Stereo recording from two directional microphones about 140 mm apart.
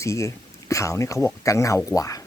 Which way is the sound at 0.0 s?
20° left (ahead or behind).